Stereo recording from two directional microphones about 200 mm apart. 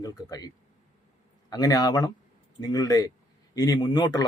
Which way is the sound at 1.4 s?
20° left (ahead or behind).